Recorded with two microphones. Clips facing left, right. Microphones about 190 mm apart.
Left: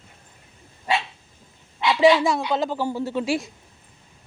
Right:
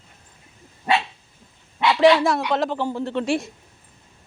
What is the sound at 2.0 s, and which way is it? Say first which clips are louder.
Speech: right 1 dB; centre (ahead or behind).